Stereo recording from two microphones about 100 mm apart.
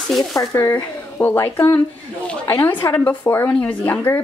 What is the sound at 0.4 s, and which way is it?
A woman's voice, 25° left (ahead or behind).